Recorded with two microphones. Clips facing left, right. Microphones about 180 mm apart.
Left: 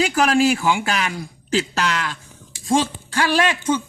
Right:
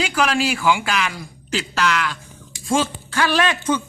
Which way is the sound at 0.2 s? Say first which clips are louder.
Left 3 dB; 40° left (ahead or behind).